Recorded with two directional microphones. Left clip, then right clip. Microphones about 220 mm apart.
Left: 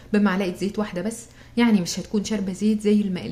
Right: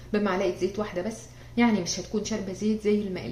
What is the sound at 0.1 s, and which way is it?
Speech, 50° left (ahead or behind).